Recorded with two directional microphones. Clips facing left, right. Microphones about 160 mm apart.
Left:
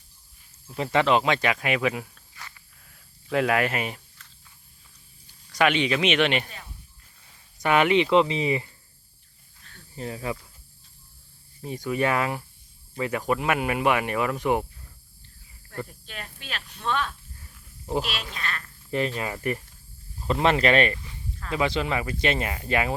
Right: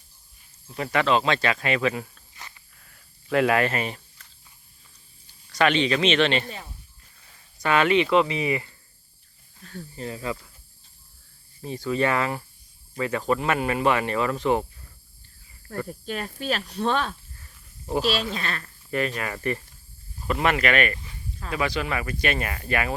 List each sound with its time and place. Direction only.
0.8 s speech: 25° left (ahead or behind)
2.8 s snake: centre (ahead or behind)
3.5 s speech: 10° left (ahead or behind)
5.5 s speech: 10° left (ahead or behind)
7.6 s speech: 15° left (ahead or behind)
9.9 s speech: 15° left (ahead or behind)
11.7 s speech: 15° left (ahead or behind)
15.9 s speech: 45° right (ahead or behind)
18.9 s speech: 20° left (ahead or behind)
19.3 s speech: 10° left (ahead or behind)
20.2 s speech: 25° left (ahead or behind)